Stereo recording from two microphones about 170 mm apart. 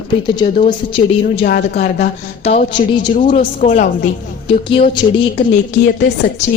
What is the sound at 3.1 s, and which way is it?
Speech, 50° left (ahead or behind).